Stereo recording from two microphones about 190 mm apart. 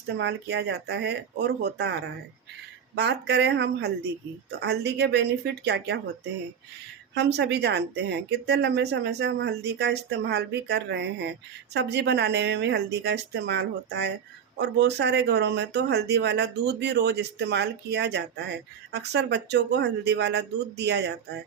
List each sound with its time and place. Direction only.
0.1 s speech: 65° right (ahead or behind)
7.1 s speech: 65° right (ahead or behind)